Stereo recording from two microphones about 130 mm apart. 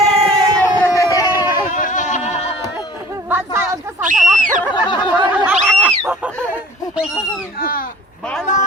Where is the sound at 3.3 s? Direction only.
20° right (ahead or behind).